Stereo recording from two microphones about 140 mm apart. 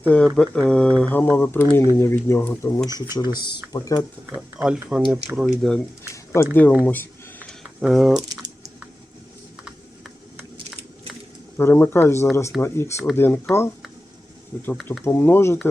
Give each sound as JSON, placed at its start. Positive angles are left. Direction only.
{"t": 0.0, "sound": "speech", "side_deg": 10}
{"t": 0.3, "sound": "mantra", "side_deg": 5}
{"t": 2.0, "sound": "speech", "side_deg": 20}
{"t": 2.9, "sound": "speech", "side_deg": -20}
{"t": 3.7, "sound": "speech", "side_deg": 30}
{"t": 4.4, "sound": "speech", "side_deg": -5}
{"t": 6.3, "sound": "mantra", "side_deg": 15}
{"t": 6.8, "sound": "a sound", "side_deg": 15}
{"t": 7.6, "sound": "speech", "side_deg": -5}
{"t": 11.5, "sound": "mantra", "side_deg": 15}
{"t": 12.5, "sound": "speech", "side_deg": 20}
{"t": 13.1, "sound": "mantra", "side_deg": 15}
{"t": 15.0, "sound": "mantra", "side_deg": 15}